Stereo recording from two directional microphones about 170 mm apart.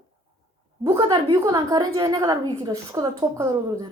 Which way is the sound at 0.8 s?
20° right (ahead or behind).